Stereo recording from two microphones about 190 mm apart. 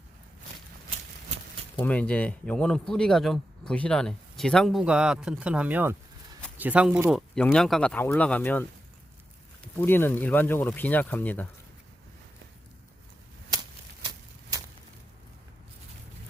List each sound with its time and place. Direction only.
1.8 s speech: 5° left (ahead or behind)
9.7 s speech: 10° left (ahead or behind)
13.5 s a sound: 20° right (ahead or behind)